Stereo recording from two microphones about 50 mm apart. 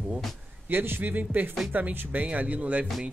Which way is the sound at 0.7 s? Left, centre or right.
Right.